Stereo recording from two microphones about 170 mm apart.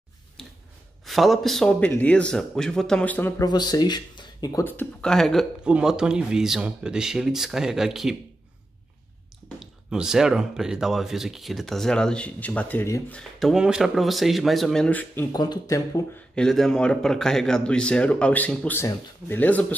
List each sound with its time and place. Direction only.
0.4 s a sound: 5° left (ahead or behind)
1.0 s speech: centre (ahead or behind)
3.4 s speech: 25° left (ahead or behind)
4.6 s speech: 10° left (ahead or behind)
9.6 s speech: 5° right (ahead or behind); by 13.2 s 15° left (ahead or behind)
13.4 s speech: 5° right (ahead or behind)
15.3 s speech: 25° left (ahead or behind)
16.3 s speech: 5° left (ahead or behind)